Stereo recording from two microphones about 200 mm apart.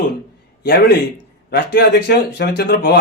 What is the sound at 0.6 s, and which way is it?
Speech, 50° left (ahead or behind).